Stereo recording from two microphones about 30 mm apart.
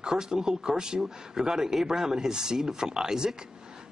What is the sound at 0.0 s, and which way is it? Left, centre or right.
Speech, right.